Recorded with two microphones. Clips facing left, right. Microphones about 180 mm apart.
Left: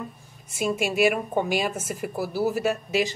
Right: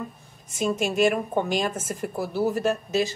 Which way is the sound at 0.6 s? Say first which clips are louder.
Even; 5° left (ahead or behind).